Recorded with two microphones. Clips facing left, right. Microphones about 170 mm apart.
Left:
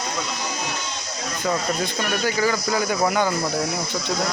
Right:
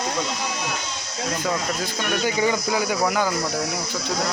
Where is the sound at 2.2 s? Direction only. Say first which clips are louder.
Even; 20° right (ahead or behind).